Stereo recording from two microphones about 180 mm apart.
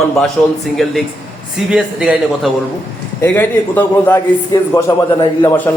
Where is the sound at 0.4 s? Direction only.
5° left (ahead or behind).